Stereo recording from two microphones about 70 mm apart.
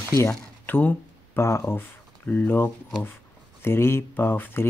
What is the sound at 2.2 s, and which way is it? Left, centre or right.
Speech, left.